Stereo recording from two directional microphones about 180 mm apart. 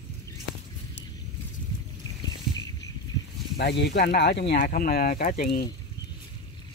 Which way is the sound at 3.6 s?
70° left (ahead or behind).